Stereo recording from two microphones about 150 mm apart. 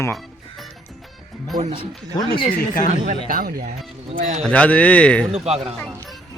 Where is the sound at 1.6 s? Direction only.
45° right (ahead or behind).